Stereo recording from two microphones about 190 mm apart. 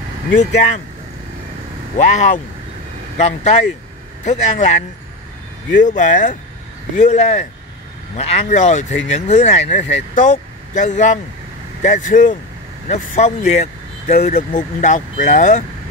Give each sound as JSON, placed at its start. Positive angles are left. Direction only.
{"t": 2.0, "sound": "speech", "side_deg": 40}
{"t": 5.9, "sound": "speech", "side_deg": 40}